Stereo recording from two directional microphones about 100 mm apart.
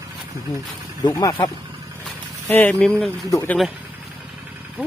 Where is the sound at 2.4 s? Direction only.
15° left (ahead or behind).